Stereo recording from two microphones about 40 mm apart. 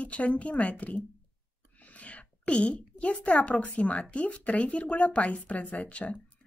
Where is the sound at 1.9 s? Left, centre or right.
Left.